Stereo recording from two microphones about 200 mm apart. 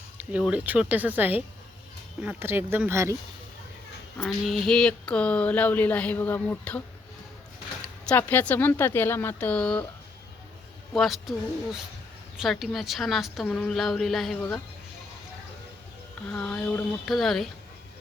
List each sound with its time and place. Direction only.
0.2 s speech: 5° right (ahead or behind)
4.2 s speech: 5° left (ahead or behind)
8.0 s speech: 10° left (ahead or behind)
10.9 s a woman's voice: centre (ahead or behind)
16.3 s a woman's voice: 5° left (ahead or behind)